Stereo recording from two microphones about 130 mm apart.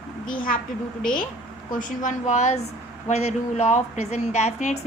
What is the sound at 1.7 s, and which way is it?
A woman's voice, 85° left.